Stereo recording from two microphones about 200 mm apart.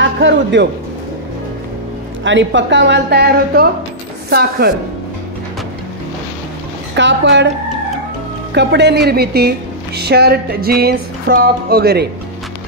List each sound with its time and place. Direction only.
0.0 s a sound: 65° right (ahead or behind)
2.2 s a woman's voice: 65° right (ahead or behind)
7.0 s speech: 65° right (ahead or behind)
8.5 s a woman's voice: 60° right (ahead or behind)